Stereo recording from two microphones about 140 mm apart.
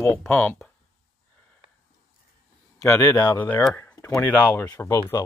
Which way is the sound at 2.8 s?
25° left (ahead or behind).